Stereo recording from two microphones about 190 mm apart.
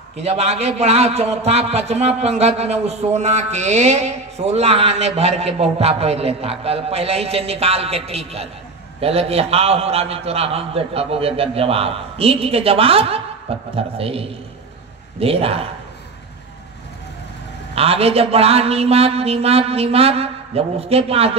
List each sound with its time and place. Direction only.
0.2 s a man's voice: 35° right (ahead or behind)
17.7 s a man's voice: 30° right (ahead or behind)